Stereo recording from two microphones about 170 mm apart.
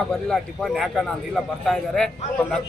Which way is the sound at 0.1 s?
5° left (ahead or behind).